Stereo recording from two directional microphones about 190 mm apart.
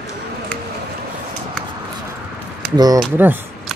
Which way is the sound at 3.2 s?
10° right (ahead or behind).